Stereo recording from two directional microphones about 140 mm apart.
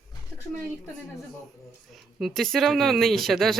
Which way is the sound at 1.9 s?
Centre (ahead or behind).